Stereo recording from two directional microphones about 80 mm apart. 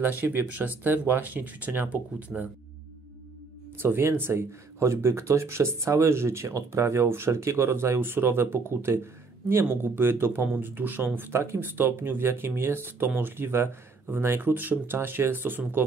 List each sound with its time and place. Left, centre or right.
0.2 s speech: right
3.8 s speech: right